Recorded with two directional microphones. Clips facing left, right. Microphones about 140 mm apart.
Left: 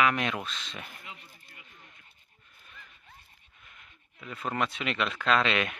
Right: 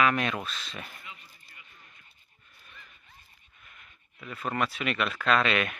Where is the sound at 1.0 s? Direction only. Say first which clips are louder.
Left 1 dB; 70° left (ahead or behind).